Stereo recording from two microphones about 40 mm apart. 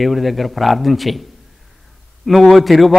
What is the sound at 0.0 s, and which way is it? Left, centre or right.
A man's voice, centre.